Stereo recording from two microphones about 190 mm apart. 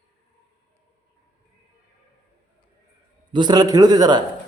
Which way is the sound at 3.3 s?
20° right (ahead or behind).